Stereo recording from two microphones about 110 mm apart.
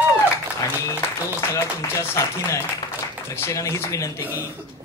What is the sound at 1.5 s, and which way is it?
A woman's voice, 25° left (ahead or behind).